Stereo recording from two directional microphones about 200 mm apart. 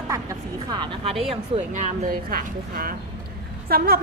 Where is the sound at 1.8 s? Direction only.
45° right (ahead or behind).